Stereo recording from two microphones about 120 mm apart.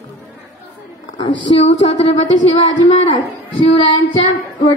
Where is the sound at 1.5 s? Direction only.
60° left (ahead or behind).